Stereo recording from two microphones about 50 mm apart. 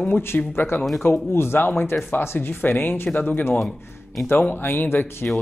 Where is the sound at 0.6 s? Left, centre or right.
Left.